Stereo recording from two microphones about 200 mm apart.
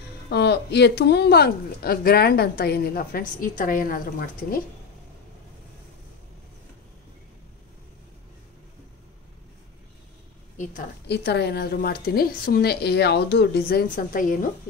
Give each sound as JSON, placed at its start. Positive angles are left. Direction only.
{"t": 0.3, "sound": "speech", "side_deg": 55}
{"t": 11.1, "sound": "speech", "side_deg": 55}